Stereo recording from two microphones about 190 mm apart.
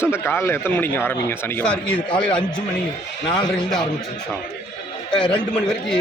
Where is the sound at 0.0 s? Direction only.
10° left (ahead or behind).